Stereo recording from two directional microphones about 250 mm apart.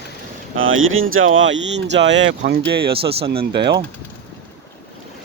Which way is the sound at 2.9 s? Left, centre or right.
Right.